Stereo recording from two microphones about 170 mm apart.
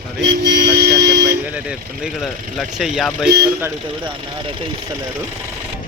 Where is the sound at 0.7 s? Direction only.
70° right (ahead or behind).